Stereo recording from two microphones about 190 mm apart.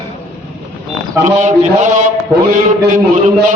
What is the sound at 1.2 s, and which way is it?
A man's voice, 40° right (ahead or behind).